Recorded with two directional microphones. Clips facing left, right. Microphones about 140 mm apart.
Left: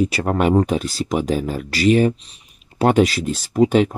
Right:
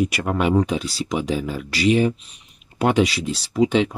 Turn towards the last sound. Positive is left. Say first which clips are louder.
# left 3 dB
turn(degrees=45)  # may be behind; listen again after turning